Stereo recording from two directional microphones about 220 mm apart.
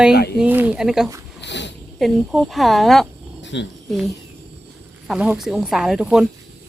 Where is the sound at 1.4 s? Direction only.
50° left (ahead or behind).